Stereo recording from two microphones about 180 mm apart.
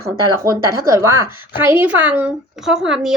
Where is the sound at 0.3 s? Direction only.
20° right (ahead or behind).